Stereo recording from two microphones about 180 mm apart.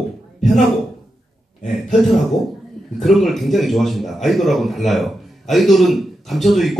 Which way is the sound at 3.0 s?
Centre (ahead or behind).